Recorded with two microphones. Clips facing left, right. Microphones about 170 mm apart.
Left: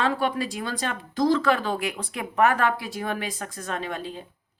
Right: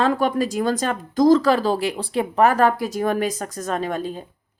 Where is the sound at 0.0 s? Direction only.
40° right (ahead or behind).